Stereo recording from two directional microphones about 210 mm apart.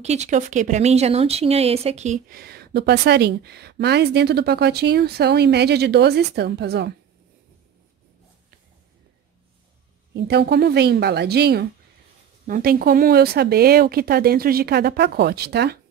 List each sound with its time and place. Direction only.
0.0 s a woman's voice: 30° right (ahead or behind); by 6.9 s 50° right (ahead or behind)
10.1 s a woman's voice: 50° right (ahead or behind)